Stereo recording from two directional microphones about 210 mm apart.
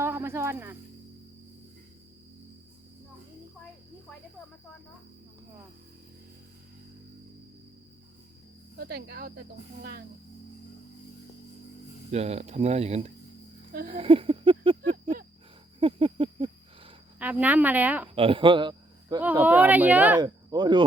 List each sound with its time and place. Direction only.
0.0 s snake: 10° right (ahead or behind)
8.8 s speech: 50° right (ahead or behind)
12.1 s speech: 30° right (ahead or behind)
13.7 s a sound: 40° right (ahead or behind)
14.0 s a sound: 25° right (ahead or behind)
17.2 s speech: 5° right (ahead or behind)
18.1 s speech: 25° right (ahead or behind)
19.2 s speech: 10° right (ahead or behind)
20.2 s speech: 20° right (ahead or behind)